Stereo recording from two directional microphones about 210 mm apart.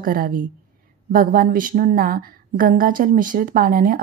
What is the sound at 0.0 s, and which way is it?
A woman's voice, 40° right (ahead or behind).